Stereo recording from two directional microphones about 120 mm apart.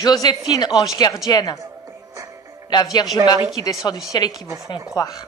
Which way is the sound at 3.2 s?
30° right (ahead or behind).